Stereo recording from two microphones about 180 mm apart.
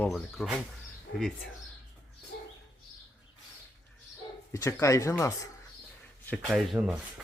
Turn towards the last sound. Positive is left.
turn(degrees=0)  # may be behind; listen again after turning